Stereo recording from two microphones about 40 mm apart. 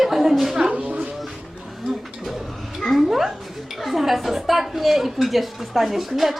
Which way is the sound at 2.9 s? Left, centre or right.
Centre.